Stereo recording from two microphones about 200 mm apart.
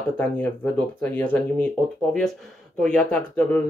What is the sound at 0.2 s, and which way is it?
Speech, 10° left (ahead or behind).